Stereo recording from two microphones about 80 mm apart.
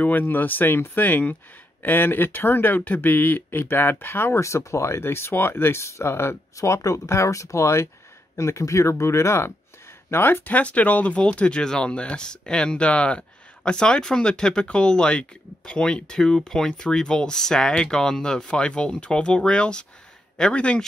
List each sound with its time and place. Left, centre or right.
0.0 s speech: left